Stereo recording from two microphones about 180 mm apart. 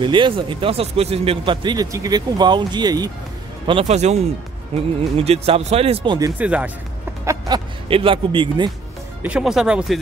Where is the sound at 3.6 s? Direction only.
35° right (ahead or behind).